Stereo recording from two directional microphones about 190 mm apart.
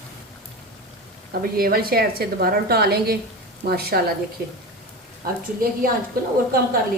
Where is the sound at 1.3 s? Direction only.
50° right (ahead or behind).